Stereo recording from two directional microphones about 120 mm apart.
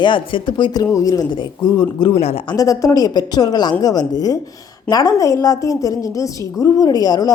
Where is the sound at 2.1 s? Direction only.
55° left (ahead or behind).